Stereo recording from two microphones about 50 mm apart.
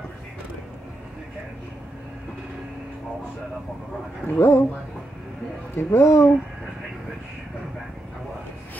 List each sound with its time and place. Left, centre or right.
4.3 s speech: left
5.8 s speech: left